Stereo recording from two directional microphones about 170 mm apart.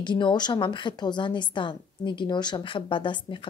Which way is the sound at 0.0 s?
25° left (ahead or behind).